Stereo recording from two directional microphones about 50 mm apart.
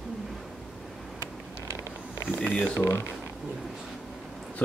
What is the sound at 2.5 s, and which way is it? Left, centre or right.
Speech, left.